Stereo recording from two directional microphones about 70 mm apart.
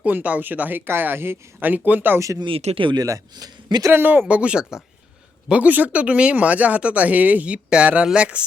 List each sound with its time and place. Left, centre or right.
0.0 s speech: right
2.1 s speech: right
2.9 s a man's voice: right
3.9 s speech: right